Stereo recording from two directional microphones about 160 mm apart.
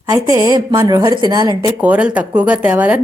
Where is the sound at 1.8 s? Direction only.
10° right (ahead or behind).